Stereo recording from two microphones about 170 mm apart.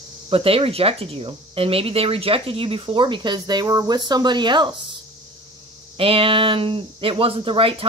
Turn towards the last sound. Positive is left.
turn(degrees=-30)  # may be behind; listen again after turning